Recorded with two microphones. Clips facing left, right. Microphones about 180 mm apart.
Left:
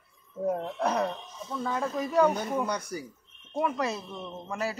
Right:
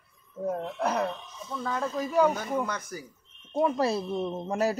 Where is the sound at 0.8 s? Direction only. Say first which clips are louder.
Even; 5° right (ahead or behind).